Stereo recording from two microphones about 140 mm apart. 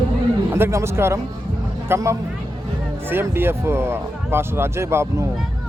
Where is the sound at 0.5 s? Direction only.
20° right (ahead or behind).